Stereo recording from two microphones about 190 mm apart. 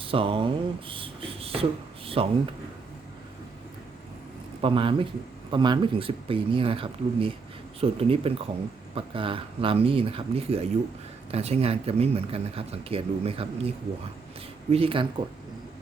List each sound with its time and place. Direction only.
0.0 s speech: 30° right (ahead or behind)
4.6 s speech: 25° right (ahead or behind)